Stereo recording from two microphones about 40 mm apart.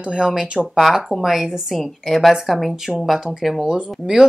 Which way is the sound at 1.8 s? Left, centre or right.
Centre.